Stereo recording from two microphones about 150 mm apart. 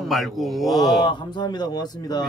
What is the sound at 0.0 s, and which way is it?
Speech, centre (ahead or behind).